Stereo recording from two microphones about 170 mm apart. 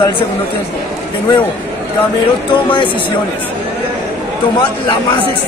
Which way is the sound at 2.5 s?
30° left (ahead or behind).